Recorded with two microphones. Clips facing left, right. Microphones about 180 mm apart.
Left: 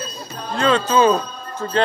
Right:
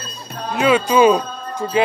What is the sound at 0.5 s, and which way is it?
Jingle bell, 10° right (ahead or behind).